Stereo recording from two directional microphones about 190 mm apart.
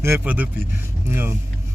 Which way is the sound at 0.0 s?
10° right (ahead or behind).